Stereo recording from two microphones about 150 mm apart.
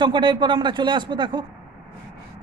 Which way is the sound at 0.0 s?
30° right (ahead or behind).